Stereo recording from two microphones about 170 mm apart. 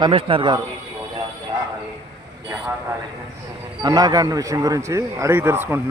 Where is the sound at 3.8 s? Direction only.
20° right (ahead or behind).